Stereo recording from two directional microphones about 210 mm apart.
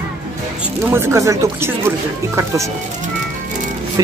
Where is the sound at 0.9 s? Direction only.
10° right (ahead or behind).